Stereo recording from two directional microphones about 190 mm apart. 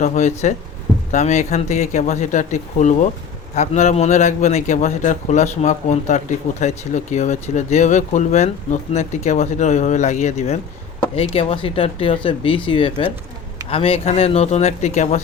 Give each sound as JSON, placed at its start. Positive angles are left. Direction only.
{"t": 0.0, "sound": "a man's voice", "side_deg": 40}